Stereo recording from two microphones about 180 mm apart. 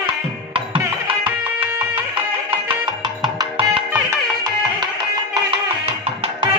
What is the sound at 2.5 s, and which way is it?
Music, 25° right (ahead or behind).